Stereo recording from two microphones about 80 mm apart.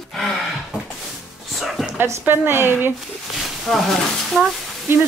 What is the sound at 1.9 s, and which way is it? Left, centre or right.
A woman's voice, right.